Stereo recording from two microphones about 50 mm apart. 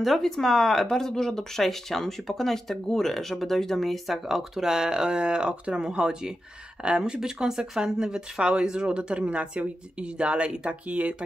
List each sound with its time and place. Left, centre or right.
0.0 s speech: centre; by 11.2 s right